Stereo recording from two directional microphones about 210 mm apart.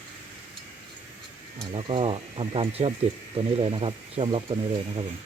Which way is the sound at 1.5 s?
25° right (ahead or behind).